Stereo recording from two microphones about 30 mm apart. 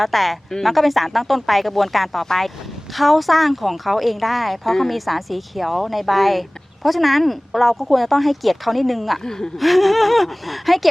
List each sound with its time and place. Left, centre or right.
0.0 s speech: centre
2.9 s speech: centre
9.2 s speech: centre
9.6 s speech: centre